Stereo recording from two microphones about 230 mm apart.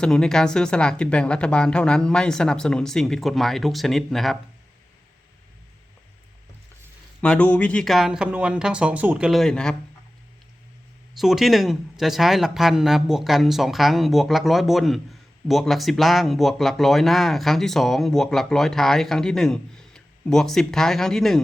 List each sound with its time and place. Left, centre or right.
0.0 s a man's voice: centre
7.2 s a man's voice: centre
11.2 s a man's voice: centre